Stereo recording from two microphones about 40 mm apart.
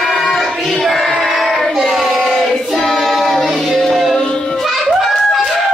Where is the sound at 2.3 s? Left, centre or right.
Centre.